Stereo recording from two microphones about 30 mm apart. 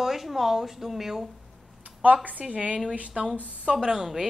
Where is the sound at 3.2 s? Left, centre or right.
Centre.